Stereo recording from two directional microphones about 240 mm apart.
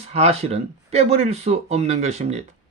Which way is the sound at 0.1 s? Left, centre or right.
Right.